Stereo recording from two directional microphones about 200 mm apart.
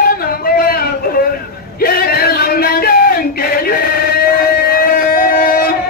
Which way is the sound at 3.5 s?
50° left (ahead or behind).